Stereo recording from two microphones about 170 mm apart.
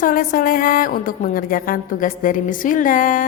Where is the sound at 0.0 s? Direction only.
55° left (ahead or behind).